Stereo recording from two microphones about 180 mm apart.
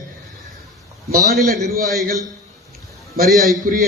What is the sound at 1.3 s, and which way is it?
Speech, centre (ahead or behind).